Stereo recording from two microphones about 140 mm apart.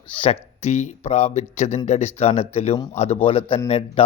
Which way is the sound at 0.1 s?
45° left (ahead or behind).